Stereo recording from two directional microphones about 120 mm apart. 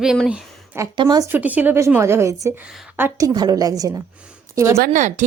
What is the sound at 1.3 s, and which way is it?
A woman's voice, 15° right (ahead or behind).